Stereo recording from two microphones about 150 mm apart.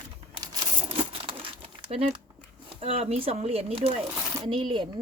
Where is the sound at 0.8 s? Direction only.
40° right (ahead or behind).